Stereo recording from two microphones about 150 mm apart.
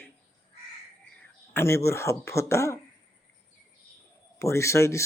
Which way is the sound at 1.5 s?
15° left (ahead or behind).